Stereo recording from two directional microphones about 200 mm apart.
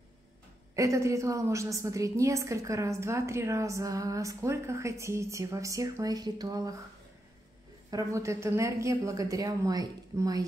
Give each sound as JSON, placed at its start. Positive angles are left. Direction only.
{"t": 0.7, "sound": "a woman's voice", "side_deg": -15}
{"t": 7.9, "sound": "a woman's voice", "side_deg": -15}